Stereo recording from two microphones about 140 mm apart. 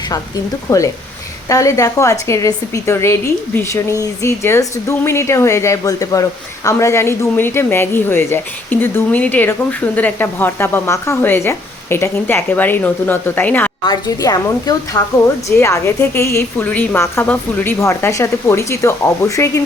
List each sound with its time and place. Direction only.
0.1 s a woman's voice: 25° left (ahead or behind)
13.8 s a woman's voice: 30° left (ahead or behind)